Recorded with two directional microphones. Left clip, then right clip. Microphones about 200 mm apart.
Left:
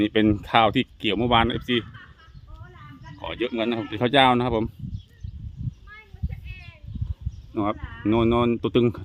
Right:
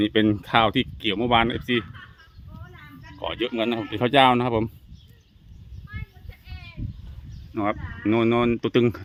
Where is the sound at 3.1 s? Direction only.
Centre (ahead or behind).